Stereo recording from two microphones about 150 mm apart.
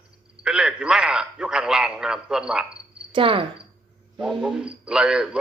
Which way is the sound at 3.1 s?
35° right (ahead or behind).